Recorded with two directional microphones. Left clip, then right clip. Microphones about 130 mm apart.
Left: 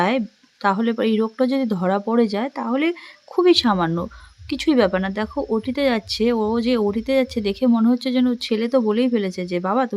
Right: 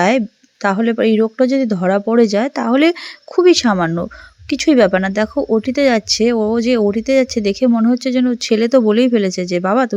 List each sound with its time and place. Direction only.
0.0 s speech: 25° right (ahead or behind); by 3.0 s 40° right (ahead or behind)
3.3 s speech: 25° right (ahead or behind)